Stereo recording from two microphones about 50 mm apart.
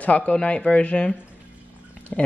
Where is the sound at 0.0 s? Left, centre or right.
Left.